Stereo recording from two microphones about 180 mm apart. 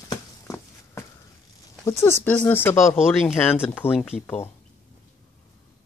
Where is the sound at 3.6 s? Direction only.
10° left (ahead or behind).